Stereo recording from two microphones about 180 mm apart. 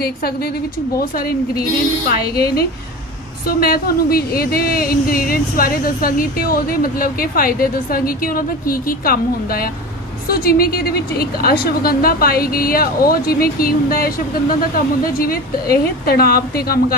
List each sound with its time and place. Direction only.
0.0 s speech: 60° left (ahead or behind)